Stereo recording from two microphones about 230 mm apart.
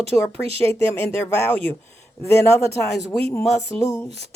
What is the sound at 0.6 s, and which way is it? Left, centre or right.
A man's voice, centre.